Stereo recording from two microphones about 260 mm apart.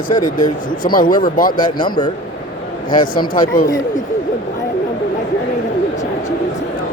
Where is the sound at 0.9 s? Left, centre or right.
Left.